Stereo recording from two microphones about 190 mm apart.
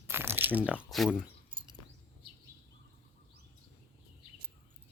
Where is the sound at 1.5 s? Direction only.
25° right (ahead or behind).